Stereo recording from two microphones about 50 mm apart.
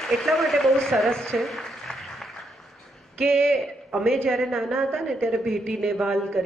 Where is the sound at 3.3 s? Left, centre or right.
Centre.